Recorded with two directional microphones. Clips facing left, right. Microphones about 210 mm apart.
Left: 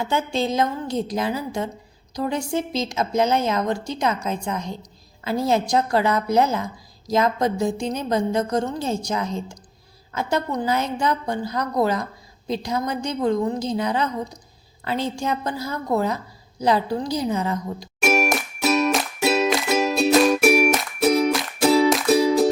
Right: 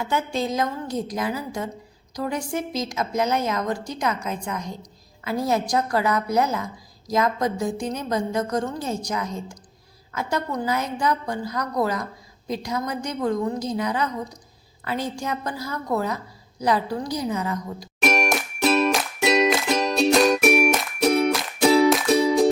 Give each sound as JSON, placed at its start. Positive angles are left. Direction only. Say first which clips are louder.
{"t": 0.0, "sound": "a woman's voice", "louder": "left 2 dB", "side_deg": 25}
{"t": 18.0, "sound": "music", "louder": "left 2 dB", "side_deg": 5}